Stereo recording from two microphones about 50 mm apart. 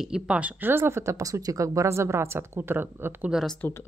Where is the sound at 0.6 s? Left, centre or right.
Right.